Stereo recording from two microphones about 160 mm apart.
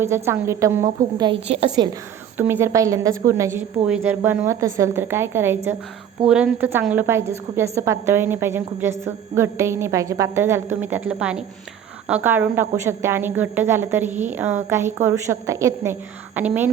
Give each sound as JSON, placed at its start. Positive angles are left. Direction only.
{"t": 0.0, "sound": "a woman's voice", "side_deg": -15}
{"t": 1.2, "sound": "a woman's voice", "side_deg": -35}
{"t": 1.7, "sound": "a woman's voice", "side_deg": -25}
{"t": 2.4, "sound": "a woman's voice", "side_deg": -15}
{"t": 3.8, "sound": "a woman's voice", "side_deg": -10}